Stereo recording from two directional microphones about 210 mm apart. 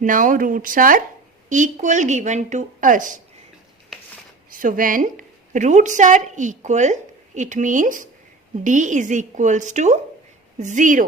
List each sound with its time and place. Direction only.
0.0 s speech: 40° right (ahead or behind)
4.5 s a woman's voice: 40° right (ahead or behind)